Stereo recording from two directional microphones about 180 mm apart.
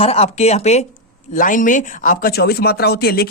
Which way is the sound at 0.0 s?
35° left (ahead or behind).